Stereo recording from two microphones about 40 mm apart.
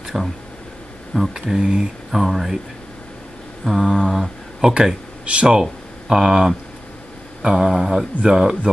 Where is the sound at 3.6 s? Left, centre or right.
Centre.